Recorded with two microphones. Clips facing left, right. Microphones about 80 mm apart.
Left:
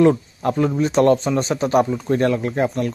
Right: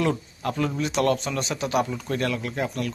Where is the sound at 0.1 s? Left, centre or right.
Left.